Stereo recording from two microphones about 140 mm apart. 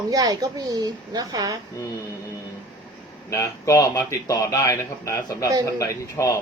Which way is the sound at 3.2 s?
20° left (ahead or behind).